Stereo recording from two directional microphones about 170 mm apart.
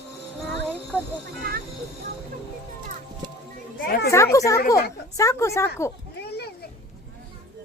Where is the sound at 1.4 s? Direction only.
65° right (ahead or behind).